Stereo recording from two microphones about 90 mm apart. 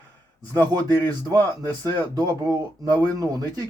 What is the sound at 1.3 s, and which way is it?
Speech, 45° right (ahead or behind).